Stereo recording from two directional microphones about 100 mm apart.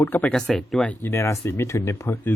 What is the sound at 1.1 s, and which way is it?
Speech, 25° left (ahead or behind).